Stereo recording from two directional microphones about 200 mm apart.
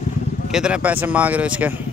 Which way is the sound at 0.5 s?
5° right (ahead or behind).